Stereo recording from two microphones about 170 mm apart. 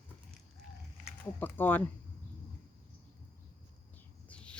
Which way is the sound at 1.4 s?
10° left (ahead or behind).